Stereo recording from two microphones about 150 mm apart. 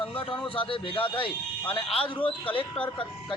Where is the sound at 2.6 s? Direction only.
10° left (ahead or behind).